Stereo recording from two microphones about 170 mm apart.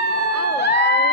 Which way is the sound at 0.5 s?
75° left (ahead or behind).